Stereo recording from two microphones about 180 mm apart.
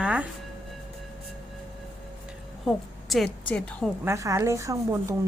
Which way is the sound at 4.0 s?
15° right (ahead or behind).